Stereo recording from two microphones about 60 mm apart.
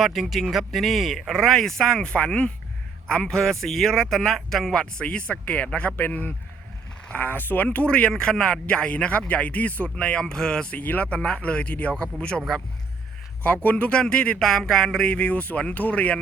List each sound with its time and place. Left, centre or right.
0.0 s speech: centre; by 12.0 s left
13.7 s speech: left